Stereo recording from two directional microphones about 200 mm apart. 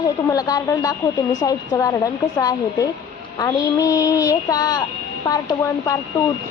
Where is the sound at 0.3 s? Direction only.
20° left (ahead or behind).